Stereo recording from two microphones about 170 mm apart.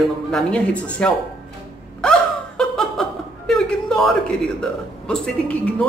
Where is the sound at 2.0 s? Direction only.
5° left (ahead or behind).